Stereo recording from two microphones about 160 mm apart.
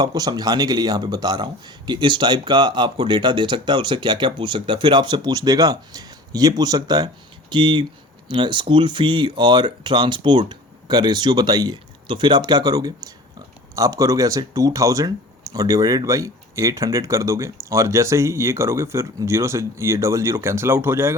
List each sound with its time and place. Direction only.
0.0 s speech: 25° right (ahead or behind)